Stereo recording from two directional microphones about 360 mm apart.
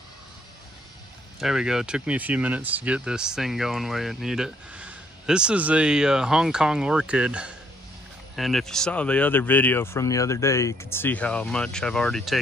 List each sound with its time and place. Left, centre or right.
1.4 s speech: centre